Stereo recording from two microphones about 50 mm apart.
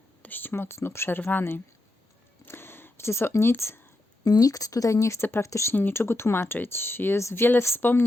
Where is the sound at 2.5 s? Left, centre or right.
Left.